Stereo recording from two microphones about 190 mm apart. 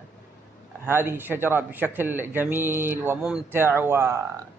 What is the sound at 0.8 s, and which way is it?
Speech, 10° right (ahead or behind).